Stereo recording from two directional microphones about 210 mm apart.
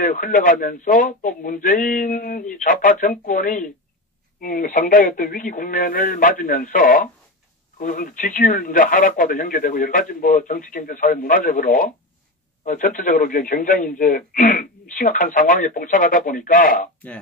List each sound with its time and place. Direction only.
0.0 s a man's voice: 40° left (ahead or behind)